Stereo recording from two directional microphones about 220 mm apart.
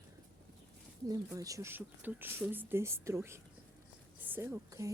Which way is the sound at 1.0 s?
15° right (ahead or behind).